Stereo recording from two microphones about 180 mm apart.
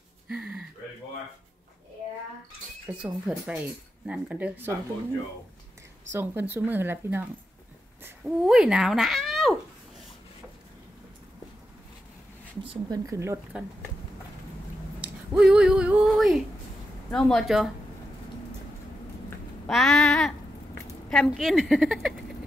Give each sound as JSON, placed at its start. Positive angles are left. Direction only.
{"t": 0.3, "sound": "gasp", "side_deg": -5}
{"t": 2.9, "sound": "speech", "side_deg": -5}
{"t": 6.1, "sound": "speech", "side_deg": -10}
{"t": 12.9, "sound": "speech", "side_deg": -20}
{"t": 15.0, "sound": "a sound", "side_deg": -5}
{"t": 17.1, "sound": "a woman's voice", "side_deg": 5}
{"t": 19.7, "sound": "a woman's voice", "side_deg": 0}